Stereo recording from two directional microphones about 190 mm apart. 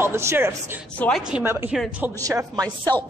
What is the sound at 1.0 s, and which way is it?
A man's voice, centre (ahead or behind).